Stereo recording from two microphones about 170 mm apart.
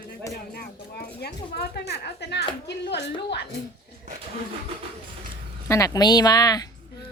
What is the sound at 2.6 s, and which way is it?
Speech, 90° left.